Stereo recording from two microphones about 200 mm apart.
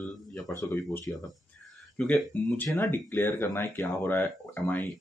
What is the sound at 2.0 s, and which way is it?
Speech, 5° left (ahead or behind).